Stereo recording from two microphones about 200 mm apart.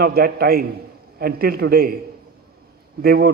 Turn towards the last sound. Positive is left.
turn(degrees=-50)  # may be behind; listen again after turning